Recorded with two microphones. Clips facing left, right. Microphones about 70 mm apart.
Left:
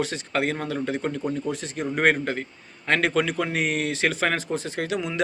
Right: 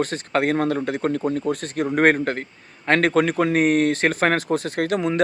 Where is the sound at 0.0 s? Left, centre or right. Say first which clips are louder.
Right 4 dB; right.